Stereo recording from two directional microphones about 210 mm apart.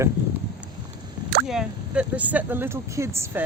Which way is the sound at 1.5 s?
5° right (ahead or behind).